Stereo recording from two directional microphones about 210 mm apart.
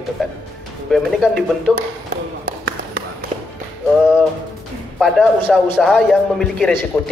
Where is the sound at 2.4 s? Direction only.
50° right (ahead or behind).